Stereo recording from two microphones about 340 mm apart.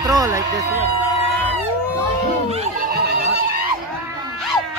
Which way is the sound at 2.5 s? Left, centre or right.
Right.